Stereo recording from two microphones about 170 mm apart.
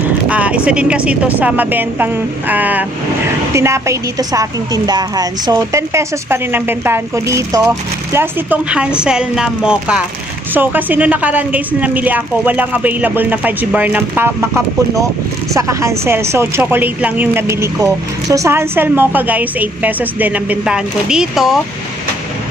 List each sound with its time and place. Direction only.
0.3 s a woman's voice: 10° right (ahead or behind)